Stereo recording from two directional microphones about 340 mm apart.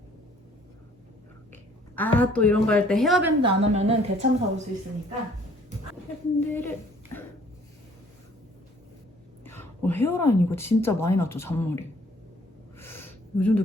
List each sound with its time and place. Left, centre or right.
2.0 s a woman's voice: centre
3.4 s a woman's voice: centre
6.4 s speech: centre
9.4 s a woman's voice: centre
12.8 s a sound: centre